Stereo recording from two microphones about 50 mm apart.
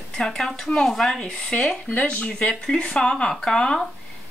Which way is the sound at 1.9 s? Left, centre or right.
Left.